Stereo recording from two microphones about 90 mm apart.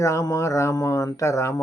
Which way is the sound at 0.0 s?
35° left (ahead or behind).